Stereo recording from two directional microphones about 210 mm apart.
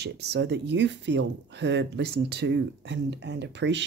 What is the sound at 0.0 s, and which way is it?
Speech, 55° right (ahead or behind).